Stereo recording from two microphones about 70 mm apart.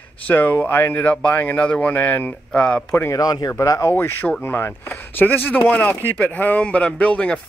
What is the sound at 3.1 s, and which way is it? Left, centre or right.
Speech, left.